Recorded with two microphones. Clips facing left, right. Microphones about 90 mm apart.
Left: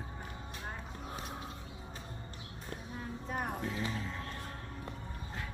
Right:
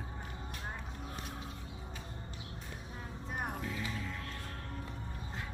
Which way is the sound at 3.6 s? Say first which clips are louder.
Left 2 dB; 30° left (ahead or behind).